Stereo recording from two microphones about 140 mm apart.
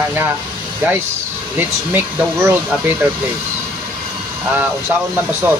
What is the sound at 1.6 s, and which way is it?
Speech, 15° right (ahead or behind).